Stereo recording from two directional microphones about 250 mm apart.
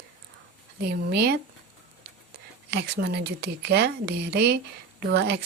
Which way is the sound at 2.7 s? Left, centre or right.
Right.